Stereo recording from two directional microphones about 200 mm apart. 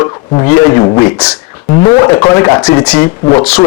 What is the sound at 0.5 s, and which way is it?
A man's voice, 15° left (ahead or behind).